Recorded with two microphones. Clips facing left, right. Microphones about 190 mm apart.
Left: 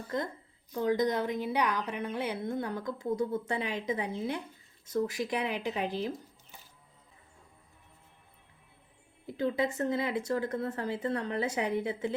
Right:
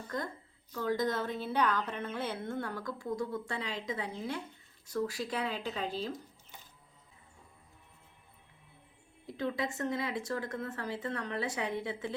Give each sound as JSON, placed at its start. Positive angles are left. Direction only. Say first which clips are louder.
{"t": 0.7, "sound": "a woman's voice", "louder": "left 4 dB", "side_deg": 15}
{"t": 9.2, "sound": "speech", "louder": "left 5 dB", "side_deg": 30}
{"t": 10.5, "sound": "speech", "louder": "left 5 dB", "side_deg": 40}
{"t": 10.8, "sound": "speech", "louder": "left 5 dB", "side_deg": 25}